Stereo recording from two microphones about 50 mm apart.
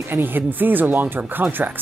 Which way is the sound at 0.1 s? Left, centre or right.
Right.